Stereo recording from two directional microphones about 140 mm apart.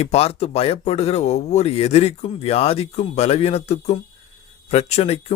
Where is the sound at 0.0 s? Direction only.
45° left (ahead or behind).